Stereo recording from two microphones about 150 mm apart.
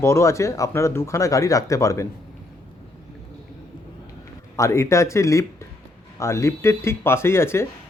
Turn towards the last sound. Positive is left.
turn(degrees=15)  # may be behind; listen again after turning